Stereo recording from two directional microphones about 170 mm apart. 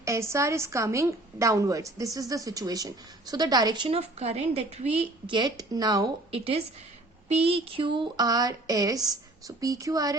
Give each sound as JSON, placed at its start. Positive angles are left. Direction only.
{"t": 0.0, "sound": "a woman's voice", "side_deg": -15}
{"t": 6.3, "sound": "a woman's voice", "side_deg": -35}